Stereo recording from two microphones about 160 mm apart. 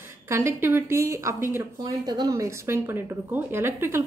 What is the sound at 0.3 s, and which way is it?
Speech, 15° right (ahead or behind).